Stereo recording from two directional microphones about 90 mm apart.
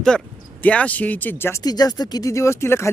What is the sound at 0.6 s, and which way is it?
Speech, 15° left (ahead or behind).